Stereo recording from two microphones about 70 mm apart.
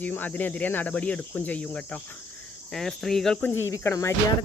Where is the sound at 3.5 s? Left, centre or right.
Left.